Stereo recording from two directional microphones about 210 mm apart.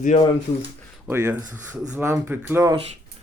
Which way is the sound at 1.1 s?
10° right (ahead or behind).